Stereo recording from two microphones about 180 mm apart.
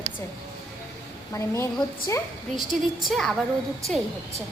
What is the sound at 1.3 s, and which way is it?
Speech, 15° left (ahead or behind).